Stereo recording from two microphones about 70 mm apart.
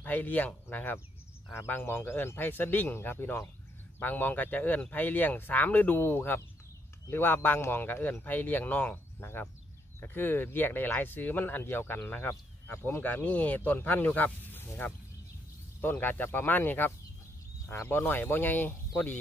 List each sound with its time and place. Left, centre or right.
0.0 s speech: left